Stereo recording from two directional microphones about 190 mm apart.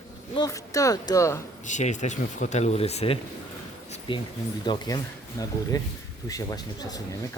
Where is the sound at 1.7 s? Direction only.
40° left (ahead or behind).